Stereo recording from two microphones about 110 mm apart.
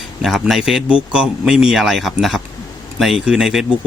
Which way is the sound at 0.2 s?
Centre (ahead or behind).